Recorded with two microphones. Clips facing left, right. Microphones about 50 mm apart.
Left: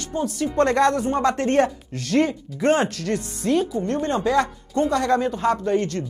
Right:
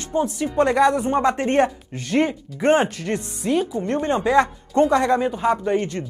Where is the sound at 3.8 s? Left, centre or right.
Right.